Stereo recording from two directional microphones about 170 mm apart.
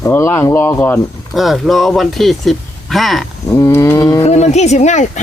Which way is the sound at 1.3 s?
Centre (ahead or behind).